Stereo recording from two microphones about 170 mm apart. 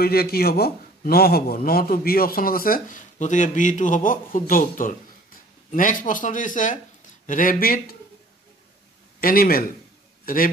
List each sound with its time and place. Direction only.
0.0 s a man's voice: 65° left (ahead or behind)
9.2 s a man's voice: 60° left (ahead or behind)